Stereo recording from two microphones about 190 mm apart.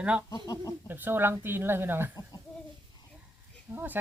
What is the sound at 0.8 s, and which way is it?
Speech, 10° right (ahead or behind).